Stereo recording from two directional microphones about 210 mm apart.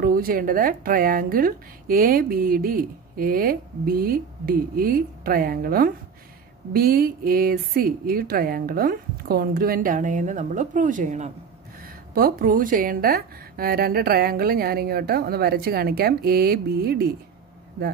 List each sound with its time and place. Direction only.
0.0 s speech: 45° right (ahead or behind)
11.8 s speech: 45° right (ahead or behind)